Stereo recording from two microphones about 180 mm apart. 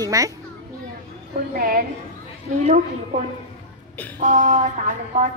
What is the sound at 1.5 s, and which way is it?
Speech, 55° right (ahead or behind).